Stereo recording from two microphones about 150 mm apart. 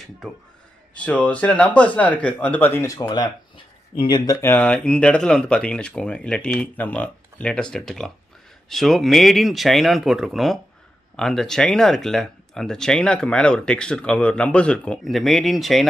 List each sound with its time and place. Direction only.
0.9 s speech: 10° left (ahead or behind); by 4.4 s 30° left (ahead or behind)
4.4 s speech: 15° left (ahead or behind)